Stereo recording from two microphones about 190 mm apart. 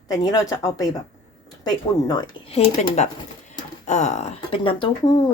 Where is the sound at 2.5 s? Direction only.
35° left (ahead or behind).